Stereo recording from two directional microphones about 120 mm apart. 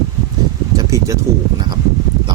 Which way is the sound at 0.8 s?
30° right (ahead or behind).